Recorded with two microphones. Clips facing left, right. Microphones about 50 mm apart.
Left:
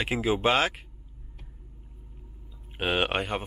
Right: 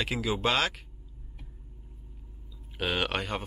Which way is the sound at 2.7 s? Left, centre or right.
Left.